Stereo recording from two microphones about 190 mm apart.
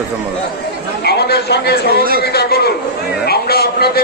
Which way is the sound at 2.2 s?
55° left (ahead or behind).